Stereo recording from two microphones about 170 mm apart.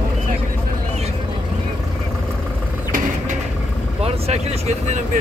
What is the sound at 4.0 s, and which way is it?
Speech, 40° right (ahead or behind).